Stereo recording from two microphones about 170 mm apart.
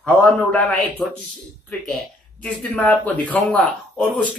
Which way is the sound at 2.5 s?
10° left (ahead or behind).